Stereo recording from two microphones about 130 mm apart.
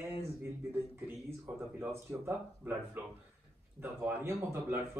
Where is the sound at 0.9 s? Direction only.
15° right (ahead or behind).